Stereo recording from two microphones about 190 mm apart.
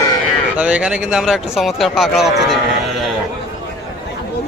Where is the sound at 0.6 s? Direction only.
5° right (ahead or behind).